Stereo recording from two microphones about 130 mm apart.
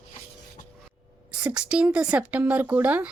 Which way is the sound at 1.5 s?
5° right (ahead or behind).